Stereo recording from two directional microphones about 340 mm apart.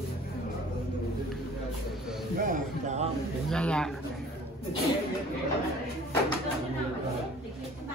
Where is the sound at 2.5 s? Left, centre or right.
Centre.